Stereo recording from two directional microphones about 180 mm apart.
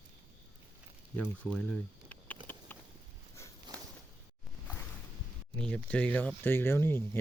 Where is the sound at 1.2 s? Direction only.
5° left (ahead or behind).